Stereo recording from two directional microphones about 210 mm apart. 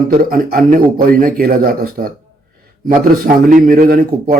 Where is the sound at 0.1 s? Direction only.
45° right (ahead or behind).